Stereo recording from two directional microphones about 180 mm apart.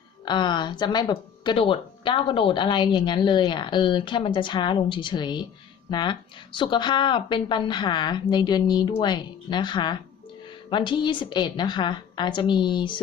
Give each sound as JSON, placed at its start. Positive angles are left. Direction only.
{"t": 0.3, "sound": "speech", "side_deg": 25}